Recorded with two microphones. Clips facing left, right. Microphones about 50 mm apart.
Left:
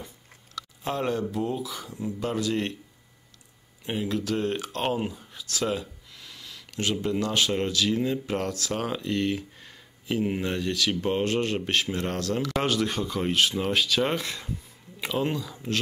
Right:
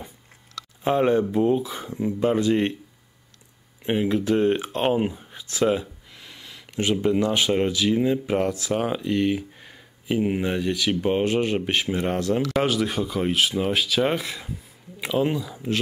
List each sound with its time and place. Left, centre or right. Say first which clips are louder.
0.8 s speech: right 8 dB; right
3.8 s speech: right 6 dB; right; by 15.8 s centre